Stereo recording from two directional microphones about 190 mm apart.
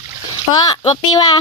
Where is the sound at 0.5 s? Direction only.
20° left (ahead or behind).